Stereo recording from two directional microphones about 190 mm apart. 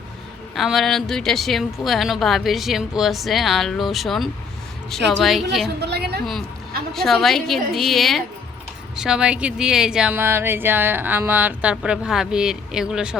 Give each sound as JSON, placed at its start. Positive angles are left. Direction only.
{"t": 0.5, "sound": "speech", "side_deg": 0}
{"t": 5.8, "sound": "a woman's voice", "side_deg": -60}
{"t": 6.9, "sound": "speech", "side_deg": 0}